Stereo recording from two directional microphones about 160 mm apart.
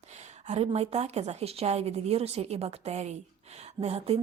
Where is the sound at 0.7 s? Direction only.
40° right (ahead or behind).